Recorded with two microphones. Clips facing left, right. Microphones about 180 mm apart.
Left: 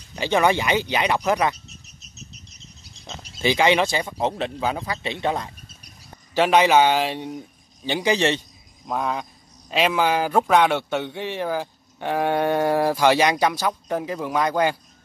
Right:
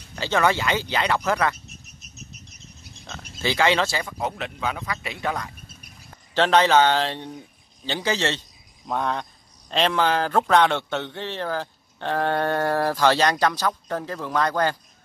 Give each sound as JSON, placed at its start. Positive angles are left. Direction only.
{"t": 0.1, "sound": "speech", "side_deg": 15}
{"t": 2.0, "sound": "bird", "side_deg": -55}
{"t": 3.3, "sound": "speech", "side_deg": 15}
{"t": 6.3, "sound": "speech", "side_deg": 10}
{"t": 8.8, "sound": "speech", "side_deg": 5}